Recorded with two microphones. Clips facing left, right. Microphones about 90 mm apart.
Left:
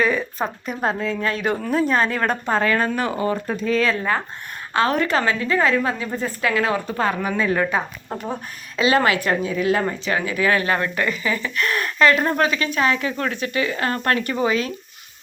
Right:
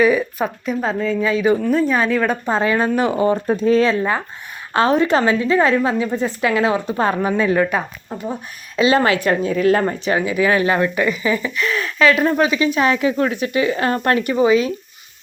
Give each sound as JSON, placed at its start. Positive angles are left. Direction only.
{"t": 0.0, "sound": "speech", "side_deg": -10}
{"t": 2.5, "sound": "a woman's voice", "side_deg": -15}
{"t": 8.7, "sound": "a woman's voice", "side_deg": -20}
{"t": 9.4, "sound": "speech", "side_deg": -45}
{"t": 9.8, "sound": "speech", "side_deg": -20}
{"t": 11.6, "sound": "speech", "side_deg": 5}
{"t": 14.3, "sound": "speech", "side_deg": -10}